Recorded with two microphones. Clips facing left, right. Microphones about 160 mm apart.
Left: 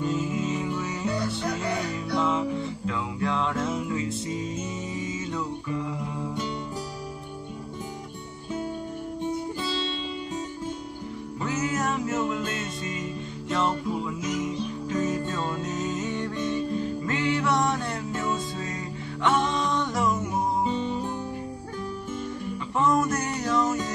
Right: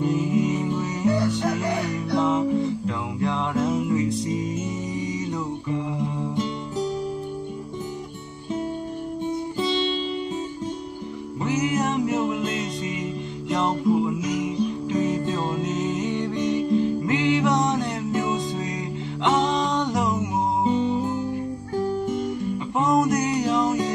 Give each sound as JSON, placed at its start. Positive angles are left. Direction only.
{"t": 0.0, "sound": "music", "side_deg": -15}
{"t": 0.7, "sound": "music", "side_deg": -40}
{"t": 1.9, "sound": "music", "side_deg": -15}
{"t": 11.5, "sound": "music", "side_deg": -15}
{"t": 13.5, "sound": "music", "side_deg": -15}
{"t": 20.6, "sound": "music", "side_deg": -35}
{"t": 22.8, "sound": "music", "side_deg": -20}